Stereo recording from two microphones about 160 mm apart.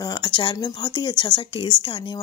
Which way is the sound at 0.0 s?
30° left (ahead or behind).